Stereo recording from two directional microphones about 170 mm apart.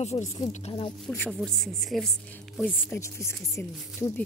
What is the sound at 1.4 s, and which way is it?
Speech, centre (ahead or behind).